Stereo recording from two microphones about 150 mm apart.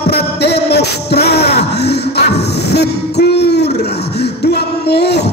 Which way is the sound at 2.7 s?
90° left.